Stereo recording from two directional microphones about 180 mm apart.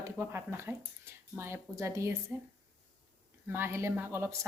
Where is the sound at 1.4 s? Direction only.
15° right (ahead or behind).